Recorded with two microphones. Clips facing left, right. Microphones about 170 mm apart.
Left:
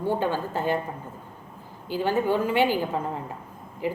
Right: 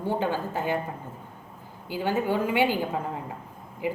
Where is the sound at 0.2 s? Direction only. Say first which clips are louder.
Left 1 dB; 15° right (ahead or behind).